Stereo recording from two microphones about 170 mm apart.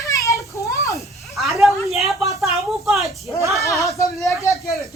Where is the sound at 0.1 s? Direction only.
20° left (ahead or behind).